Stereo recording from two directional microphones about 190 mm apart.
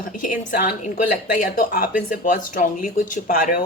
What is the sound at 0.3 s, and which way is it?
Speech, 50° left (ahead or behind).